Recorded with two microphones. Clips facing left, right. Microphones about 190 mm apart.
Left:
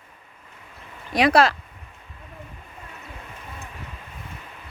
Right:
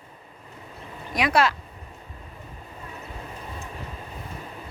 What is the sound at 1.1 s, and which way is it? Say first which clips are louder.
Speech: left 4 dB; 35° left (ahead or behind).